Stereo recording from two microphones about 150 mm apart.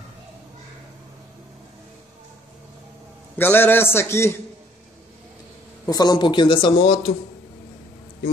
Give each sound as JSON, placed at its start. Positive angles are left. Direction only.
{"t": 3.3, "sound": "a man's voice", "side_deg": 15}
{"t": 5.9, "sound": "speech", "side_deg": 25}